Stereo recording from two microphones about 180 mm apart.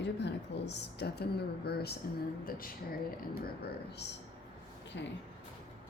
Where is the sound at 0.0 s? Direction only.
70° left (ahead or behind); by 2.7 s 55° left (ahead or behind).